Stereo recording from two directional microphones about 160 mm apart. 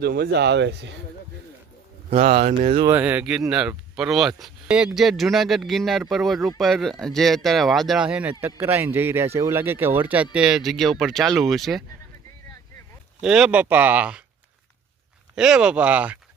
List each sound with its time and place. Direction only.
0.0 s speech: 85° right
2.1 s speech: 45° right (ahead or behind)
2.9 s speech: 10° right (ahead or behind)
13.2 s speech: 5° right (ahead or behind)
15.4 s speech: 5° right (ahead or behind)